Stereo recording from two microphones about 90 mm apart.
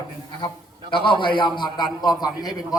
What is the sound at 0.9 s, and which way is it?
A man's voice, 65° left (ahead or behind).